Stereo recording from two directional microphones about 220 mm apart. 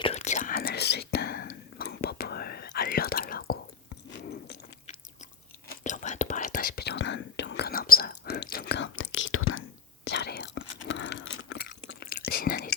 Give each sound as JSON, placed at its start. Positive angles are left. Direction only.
{"t": 0.0, "sound": "whispering", "side_deg": 30}
{"t": 4.2, "sound": "a sound", "side_deg": 45}
{"t": 5.6, "sound": "whispering", "side_deg": 35}
{"t": 11.9, "sound": "whispering", "side_deg": 45}